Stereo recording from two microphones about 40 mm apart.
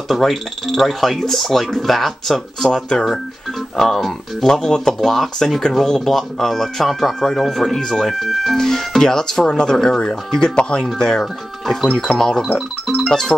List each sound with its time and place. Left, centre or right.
0.1 s speech: centre
3.7 s music: centre
4.4 s speech: centre
8.5 s speech: centre
11.0 s music: centre
11.6 s speech: centre
13.1 s music: centre